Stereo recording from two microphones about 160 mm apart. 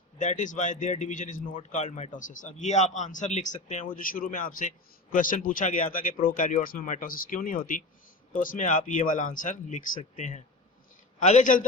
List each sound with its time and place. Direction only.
0.2 s speech: 50° left (ahead or behind)